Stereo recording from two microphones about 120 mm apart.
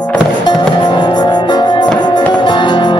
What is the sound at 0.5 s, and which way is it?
Music, 40° left (ahead or behind).